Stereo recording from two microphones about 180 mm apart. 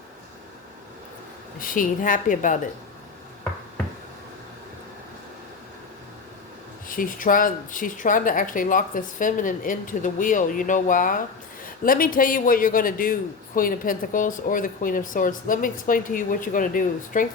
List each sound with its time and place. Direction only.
1.5 s a woman's voice: 50° left (ahead or behind)
6.8 s a woman's voice: 50° left (ahead or behind)